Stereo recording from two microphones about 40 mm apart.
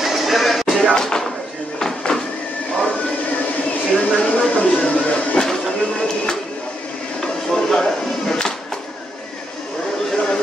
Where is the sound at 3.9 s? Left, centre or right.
Left.